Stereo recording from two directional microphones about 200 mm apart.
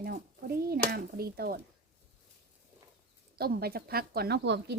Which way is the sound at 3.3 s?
50° right (ahead or behind).